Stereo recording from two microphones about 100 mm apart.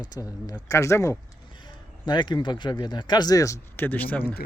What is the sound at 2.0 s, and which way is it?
Speech, 45° left (ahead or behind).